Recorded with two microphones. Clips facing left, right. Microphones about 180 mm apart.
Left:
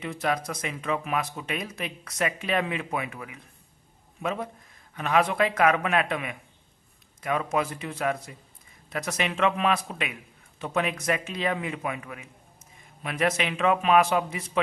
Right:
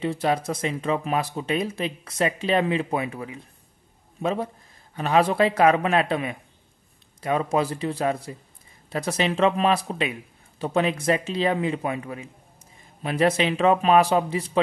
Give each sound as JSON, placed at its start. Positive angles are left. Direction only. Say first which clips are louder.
{"t": 0.0, "sound": "speech", "louder": "right 5 dB", "side_deg": -30}